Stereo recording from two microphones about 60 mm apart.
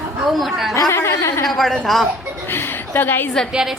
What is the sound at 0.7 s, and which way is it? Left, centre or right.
Speech, left.